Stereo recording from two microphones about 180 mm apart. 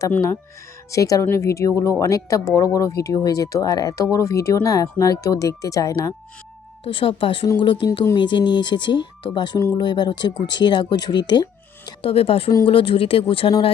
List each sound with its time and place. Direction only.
0.0 s speech: 15° left (ahead or behind)
6.8 s speech: 30° left (ahead or behind)